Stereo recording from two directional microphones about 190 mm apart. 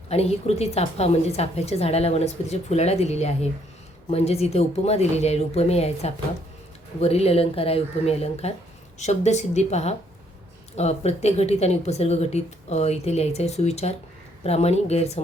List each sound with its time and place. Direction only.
0.1 s a woman's voice: 35° left (ahead or behind)